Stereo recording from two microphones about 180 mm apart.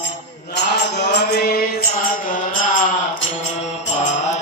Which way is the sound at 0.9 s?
65° left (ahead or behind).